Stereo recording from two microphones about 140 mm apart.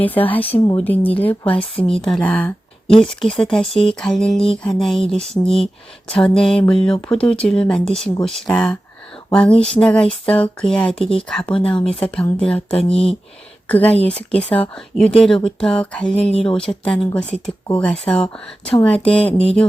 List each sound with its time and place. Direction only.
0.0 s speech: 10° left (ahead or behind)
12.7 s speech: 45° left (ahead or behind)
13.7 s speech: 10° left (ahead or behind)